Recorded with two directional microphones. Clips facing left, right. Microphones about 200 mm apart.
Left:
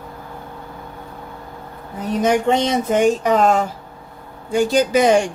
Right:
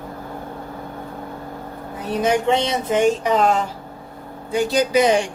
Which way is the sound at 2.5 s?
45° left (ahead or behind).